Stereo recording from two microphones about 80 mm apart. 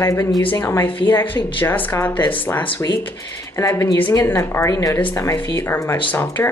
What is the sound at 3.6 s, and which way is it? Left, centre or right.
Speech, left.